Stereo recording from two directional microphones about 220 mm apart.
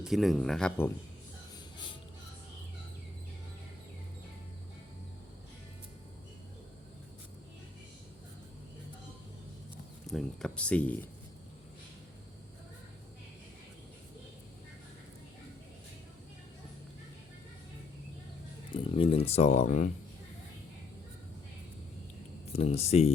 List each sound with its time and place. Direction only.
0.0 s speech: centre (ahead or behind)
10.1 s speech: centre (ahead or behind)
18.7 s speech: 25° left (ahead or behind)
22.5 s speech: 30° left (ahead or behind)